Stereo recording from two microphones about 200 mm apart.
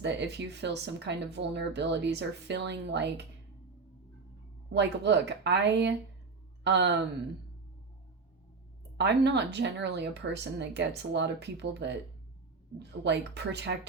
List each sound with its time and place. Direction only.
0.0 s speech: 60° right (ahead or behind)
4.7 s speech: 60° right (ahead or behind)
9.0 s speech: 60° right (ahead or behind)
13.1 s speech: 60° right (ahead or behind)